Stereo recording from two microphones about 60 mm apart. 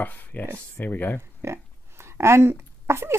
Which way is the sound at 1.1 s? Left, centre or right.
Right.